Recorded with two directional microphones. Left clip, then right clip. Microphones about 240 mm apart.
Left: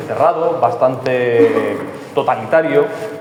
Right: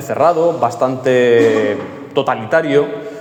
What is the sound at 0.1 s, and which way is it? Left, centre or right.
A man's voice, right.